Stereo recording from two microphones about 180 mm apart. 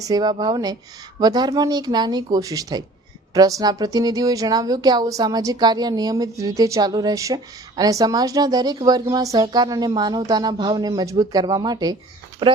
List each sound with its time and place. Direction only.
0.0 s speech: 20° right (ahead or behind)